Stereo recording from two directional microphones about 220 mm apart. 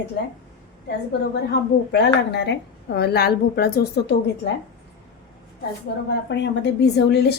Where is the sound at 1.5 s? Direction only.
50° left (ahead or behind).